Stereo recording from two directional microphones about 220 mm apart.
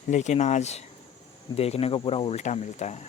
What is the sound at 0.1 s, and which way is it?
Speech, 30° left (ahead or behind).